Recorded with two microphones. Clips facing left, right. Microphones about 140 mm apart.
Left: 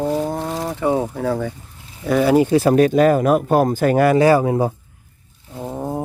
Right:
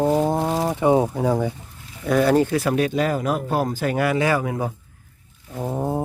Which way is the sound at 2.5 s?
30° left (ahead or behind).